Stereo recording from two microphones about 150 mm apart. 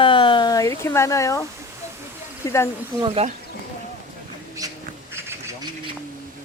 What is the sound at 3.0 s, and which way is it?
Speech, 40° right (ahead or behind).